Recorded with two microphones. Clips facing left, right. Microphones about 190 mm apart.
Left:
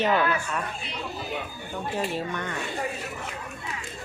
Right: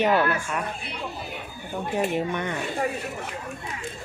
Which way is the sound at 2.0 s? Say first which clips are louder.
Right 4 dB; 20° right (ahead or behind).